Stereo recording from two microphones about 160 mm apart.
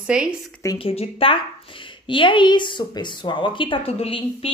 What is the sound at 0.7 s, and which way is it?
A woman's voice, 35° left (ahead or behind).